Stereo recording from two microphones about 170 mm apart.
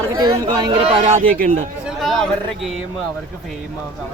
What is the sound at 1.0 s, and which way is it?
Speech, 50° right (ahead or behind).